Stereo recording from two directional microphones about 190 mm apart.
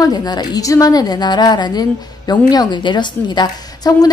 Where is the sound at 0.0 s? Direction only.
20° left (ahead or behind).